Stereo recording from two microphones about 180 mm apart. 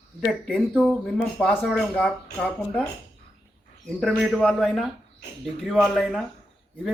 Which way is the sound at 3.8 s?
Centre (ahead or behind).